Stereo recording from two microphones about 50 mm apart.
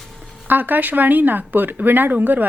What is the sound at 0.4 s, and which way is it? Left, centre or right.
Speech, right.